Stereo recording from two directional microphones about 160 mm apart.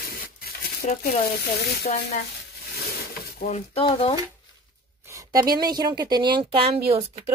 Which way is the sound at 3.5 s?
35° left (ahead or behind).